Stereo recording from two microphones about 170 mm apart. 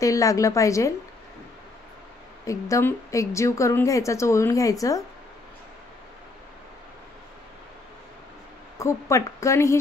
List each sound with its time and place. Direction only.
0.0 s a woman's voice: 20° left (ahead or behind)
2.4 s a woman's voice: 20° left (ahead or behind)
8.7 s a woman's voice: 20° left (ahead or behind)